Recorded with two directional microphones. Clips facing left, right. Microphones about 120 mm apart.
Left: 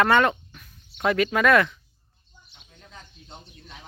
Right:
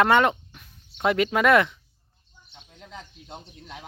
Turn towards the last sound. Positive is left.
turn(degrees=-90)